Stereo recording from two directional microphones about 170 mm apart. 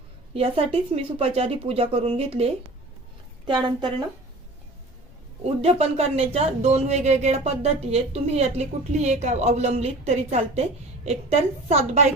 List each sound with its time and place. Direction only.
0.3 s a woman's voice: 35° right (ahead or behind)
5.6 s speech: 35° right (ahead or behind)